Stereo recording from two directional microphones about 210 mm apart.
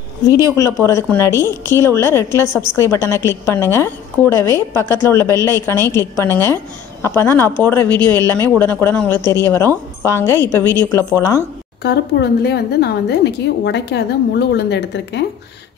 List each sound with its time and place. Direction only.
0.8 s a woman's voice: 15° left (ahead or behind)
11.8 s speech: 50° left (ahead or behind)